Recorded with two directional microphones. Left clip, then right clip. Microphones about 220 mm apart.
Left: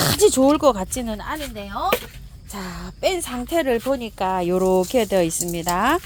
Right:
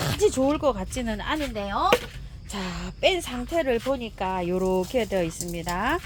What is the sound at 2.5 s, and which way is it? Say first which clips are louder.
Speech: even; 5° left (ahead or behind).